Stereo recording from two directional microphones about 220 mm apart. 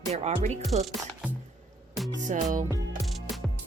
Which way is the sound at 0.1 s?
30° right (ahead or behind).